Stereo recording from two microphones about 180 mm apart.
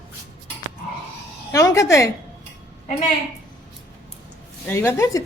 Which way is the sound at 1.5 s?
15° left (ahead or behind).